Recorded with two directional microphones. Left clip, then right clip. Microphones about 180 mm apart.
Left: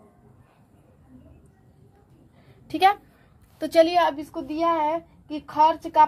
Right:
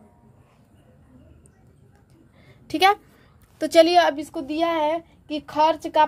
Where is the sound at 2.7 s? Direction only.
30° right (ahead or behind).